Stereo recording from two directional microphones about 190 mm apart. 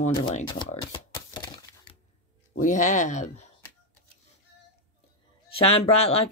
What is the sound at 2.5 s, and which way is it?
Speech, 40° left (ahead or behind).